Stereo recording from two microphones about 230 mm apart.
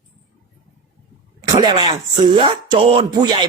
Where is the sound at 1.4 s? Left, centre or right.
Centre.